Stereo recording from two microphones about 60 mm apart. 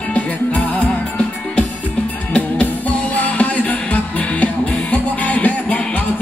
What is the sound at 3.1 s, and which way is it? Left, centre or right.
Music, left.